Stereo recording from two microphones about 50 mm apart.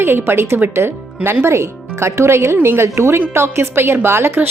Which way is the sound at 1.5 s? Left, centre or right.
Right.